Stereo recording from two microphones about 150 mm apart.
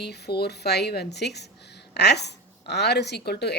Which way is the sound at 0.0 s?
90° left.